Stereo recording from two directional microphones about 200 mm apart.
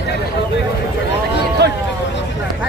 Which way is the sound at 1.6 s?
55° right (ahead or behind).